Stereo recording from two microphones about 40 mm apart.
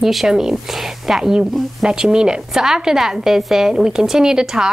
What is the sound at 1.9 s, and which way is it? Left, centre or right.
A woman's voice, right.